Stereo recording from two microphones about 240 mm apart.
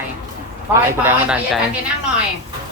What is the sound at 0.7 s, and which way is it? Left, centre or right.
Speech, centre.